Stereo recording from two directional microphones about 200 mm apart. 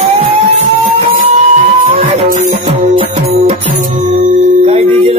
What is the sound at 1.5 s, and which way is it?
Music, 30° right (ahead or behind).